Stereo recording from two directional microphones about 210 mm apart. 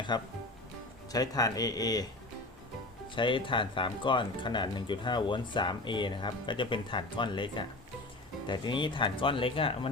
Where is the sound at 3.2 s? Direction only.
25° left (ahead or behind).